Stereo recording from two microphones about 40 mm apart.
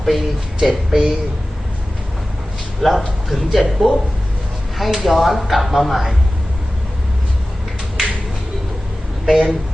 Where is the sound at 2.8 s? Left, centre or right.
Centre.